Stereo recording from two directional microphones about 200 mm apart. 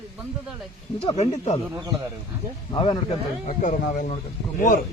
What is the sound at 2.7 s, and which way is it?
Speech, 25° left (ahead or behind).